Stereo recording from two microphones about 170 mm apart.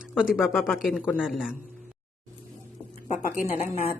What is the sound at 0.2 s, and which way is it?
Speech, 5° right (ahead or behind).